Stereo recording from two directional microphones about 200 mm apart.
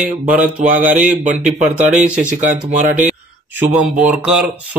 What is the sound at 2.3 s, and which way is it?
Speech, 40° right (ahead or behind).